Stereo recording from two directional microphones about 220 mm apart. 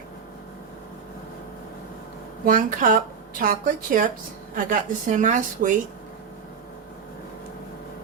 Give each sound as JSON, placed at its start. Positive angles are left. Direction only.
{"t": 2.5, "sound": "speech", "side_deg": -40}